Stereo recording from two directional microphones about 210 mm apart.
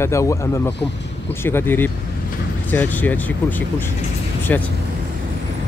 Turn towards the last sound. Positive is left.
turn(degrees=10)  # may be behind; listen again after turning